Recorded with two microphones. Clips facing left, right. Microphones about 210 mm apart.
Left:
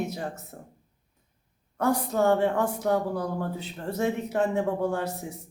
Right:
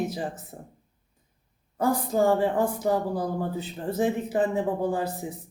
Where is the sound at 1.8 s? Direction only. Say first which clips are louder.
Right 1 dB; centre (ahead or behind).